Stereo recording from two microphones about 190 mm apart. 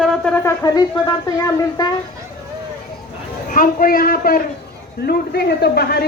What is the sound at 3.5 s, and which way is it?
A man's voice, 45° left (ahead or behind).